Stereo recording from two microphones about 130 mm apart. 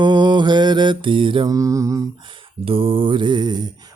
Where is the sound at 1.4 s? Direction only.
25° right (ahead or behind).